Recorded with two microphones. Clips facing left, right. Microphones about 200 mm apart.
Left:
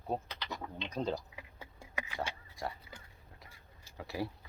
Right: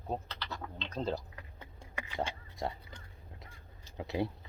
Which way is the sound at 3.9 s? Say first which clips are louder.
Right 4 dB; 20° right (ahead or behind).